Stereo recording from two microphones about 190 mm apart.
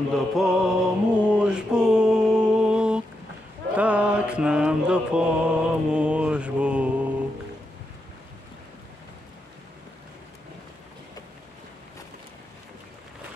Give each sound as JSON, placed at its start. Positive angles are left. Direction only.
{"t": 0.1, "sound": "music", "side_deg": 0}
{"t": 2.7, "sound": "a sound", "side_deg": -5}
{"t": 3.7, "sound": "mantra", "side_deg": -5}